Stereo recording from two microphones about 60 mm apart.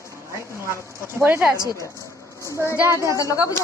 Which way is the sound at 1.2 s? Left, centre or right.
Right.